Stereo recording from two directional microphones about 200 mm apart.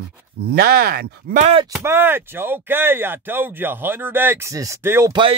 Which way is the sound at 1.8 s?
10° right (ahead or behind).